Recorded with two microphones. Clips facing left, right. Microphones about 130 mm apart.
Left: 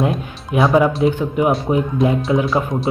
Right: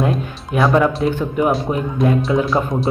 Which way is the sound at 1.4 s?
20° left (ahead or behind).